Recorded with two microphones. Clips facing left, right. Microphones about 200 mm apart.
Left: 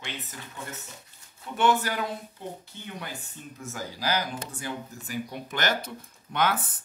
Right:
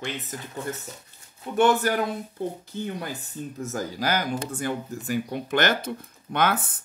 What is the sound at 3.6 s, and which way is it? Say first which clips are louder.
Speech: right 6 dB; 45° right (ahead or behind).